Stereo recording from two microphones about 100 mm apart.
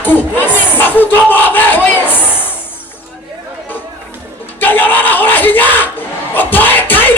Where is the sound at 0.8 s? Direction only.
20° left (ahead or behind).